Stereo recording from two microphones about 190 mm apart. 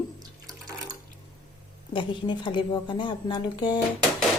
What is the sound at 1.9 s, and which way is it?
Speech, 25° left (ahead or behind).